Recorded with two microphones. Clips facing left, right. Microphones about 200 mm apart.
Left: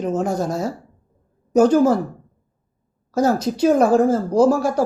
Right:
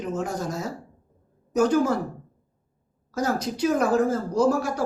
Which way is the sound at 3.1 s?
30° left (ahead or behind).